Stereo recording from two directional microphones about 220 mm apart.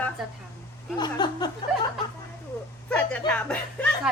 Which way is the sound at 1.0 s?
20° left (ahead or behind).